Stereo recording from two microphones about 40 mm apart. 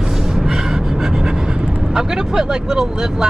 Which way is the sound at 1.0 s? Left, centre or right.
Centre.